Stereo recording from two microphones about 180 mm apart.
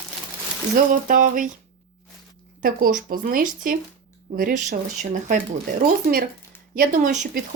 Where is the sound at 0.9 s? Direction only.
50° right (ahead or behind).